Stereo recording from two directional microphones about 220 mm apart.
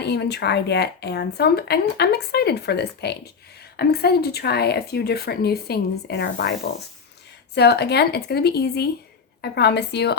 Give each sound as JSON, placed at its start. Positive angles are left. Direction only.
{"t": 0.0, "sound": "speech", "side_deg": 50}
{"t": 7.5, "sound": "speech", "side_deg": 50}